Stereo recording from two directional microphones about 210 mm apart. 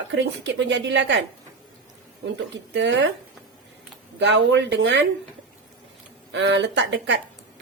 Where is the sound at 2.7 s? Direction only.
55° right (ahead or behind).